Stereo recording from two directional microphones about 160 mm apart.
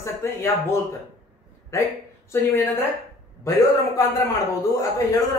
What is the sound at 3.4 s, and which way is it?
A man's voice, 20° left (ahead or behind).